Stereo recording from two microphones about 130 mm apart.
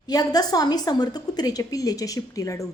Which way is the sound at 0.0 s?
30° left (ahead or behind).